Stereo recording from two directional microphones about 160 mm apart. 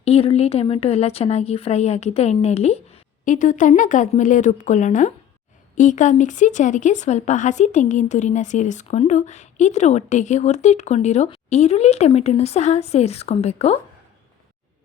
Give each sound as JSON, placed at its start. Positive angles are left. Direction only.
{"t": 0.0, "sound": "speech", "side_deg": 40}